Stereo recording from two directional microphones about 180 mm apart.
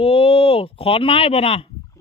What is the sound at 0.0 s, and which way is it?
Speech, 30° left (ahead or behind).